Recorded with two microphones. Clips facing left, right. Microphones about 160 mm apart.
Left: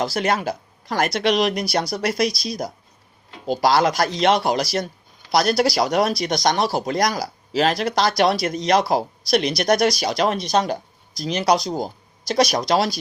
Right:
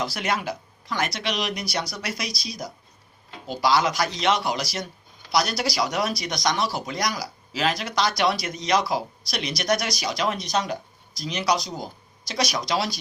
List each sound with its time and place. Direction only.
0.0 s speech: 35° left (ahead or behind)
2.0 s speech: 55° left (ahead or behind)
4.4 s speech: 40° left (ahead or behind)
6.5 s speech: 40° left (ahead or behind)
10.1 s speech: 35° left (ahead or behind)
11.2 s speech: 45° left (ahead or behind)